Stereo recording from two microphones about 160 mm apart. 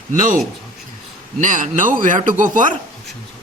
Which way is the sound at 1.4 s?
55° right (ahead or behind).